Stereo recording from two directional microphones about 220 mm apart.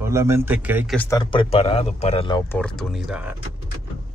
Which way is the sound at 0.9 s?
10° left (ahead or behind).